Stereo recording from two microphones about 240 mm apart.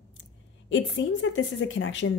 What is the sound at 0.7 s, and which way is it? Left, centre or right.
Speech, left.